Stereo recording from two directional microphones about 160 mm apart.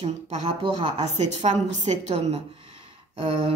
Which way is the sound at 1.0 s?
45° right (ahead or behind).